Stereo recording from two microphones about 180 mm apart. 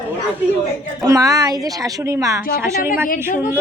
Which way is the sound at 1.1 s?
20° right (ahead or behind).